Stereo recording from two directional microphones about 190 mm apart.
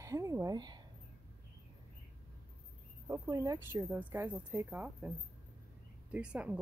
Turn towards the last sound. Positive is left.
turn(degrees=-5)  # may be behind; listen again after turning